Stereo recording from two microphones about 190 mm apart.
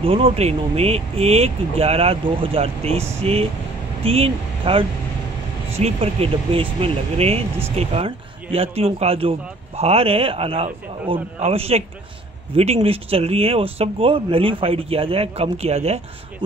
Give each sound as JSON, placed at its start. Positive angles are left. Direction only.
{"t": 0.0, "sound": "speech", "side_deg": -30}